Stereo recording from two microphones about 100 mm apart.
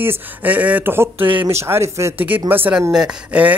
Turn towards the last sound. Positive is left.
turn(degrees=-15)  # may be behind; listen again after turning